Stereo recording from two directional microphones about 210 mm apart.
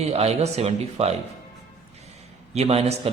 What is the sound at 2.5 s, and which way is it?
Speech, 30° right (ahead or behind).